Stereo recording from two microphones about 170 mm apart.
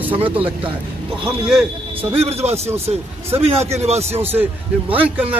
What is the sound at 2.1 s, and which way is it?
A man's voice, 40° right (ahead or behind).